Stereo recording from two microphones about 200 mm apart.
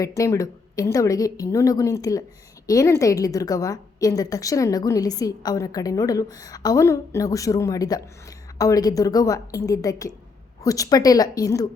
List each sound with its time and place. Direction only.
0.0 s a woman's voice: 15° left (ahead or behind)